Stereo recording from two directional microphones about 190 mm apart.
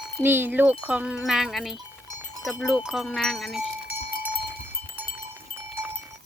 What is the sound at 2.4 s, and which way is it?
Speech, centre (ahead or behind).